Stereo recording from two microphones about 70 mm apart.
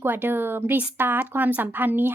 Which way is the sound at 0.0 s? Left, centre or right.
Right.